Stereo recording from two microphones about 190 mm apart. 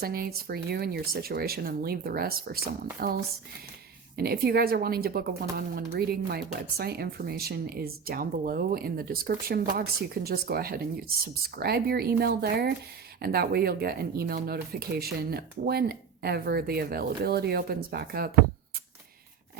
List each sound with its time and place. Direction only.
0.0 s speech: 55° right (ahead or behind)
4.2 s speech: 55° right (ahead or behind)